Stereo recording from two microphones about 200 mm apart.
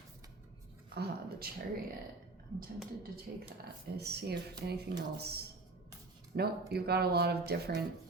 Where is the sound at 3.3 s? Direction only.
50° right (ahead or behind).